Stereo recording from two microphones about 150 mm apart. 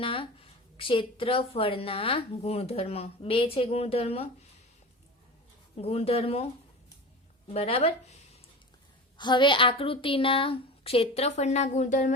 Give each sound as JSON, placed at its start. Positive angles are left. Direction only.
{"t": 0.0, "sound": "a woman's voice", "side_deg": 35}
{"t": 5.7, "sound": "a woman's voice", "side_deg": 45}
{"t": 9.1, "sound": "a woman's voice", "side_deg": 30}